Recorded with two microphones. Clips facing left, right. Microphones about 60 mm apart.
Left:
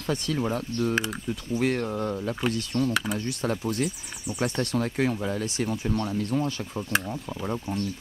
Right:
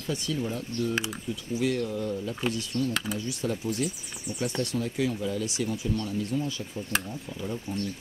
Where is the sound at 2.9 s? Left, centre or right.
Centre.